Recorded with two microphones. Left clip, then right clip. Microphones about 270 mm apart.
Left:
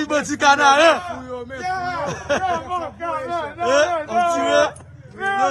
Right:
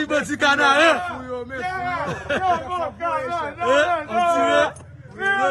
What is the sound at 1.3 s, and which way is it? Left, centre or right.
Speech, centre.